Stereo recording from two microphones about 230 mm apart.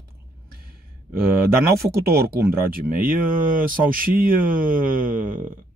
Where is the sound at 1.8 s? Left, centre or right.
Right.